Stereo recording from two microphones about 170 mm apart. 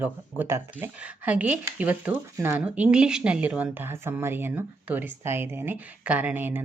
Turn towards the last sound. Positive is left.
turn(degrees=-10)  # may be behind; listen again after turning